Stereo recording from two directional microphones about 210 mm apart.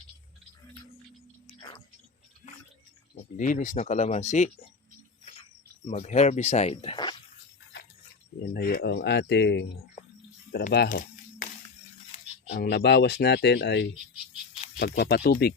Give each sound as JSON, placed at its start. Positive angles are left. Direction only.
{"t": 1.5, "sound": "music", "side_deg": 25}
{"t": 3.3, "sound": "speech", "side_deg": 40}
{"t": 5.8, "sound": "speech", "side_deg": 35}
{"t": 8.5, "sound": "speech", "side_deg": 50}
{"t": 10.8, "sound": "a sound", "side_deg": 40}
{"t": 12.5, "sound": "speech", "side_deg": 50}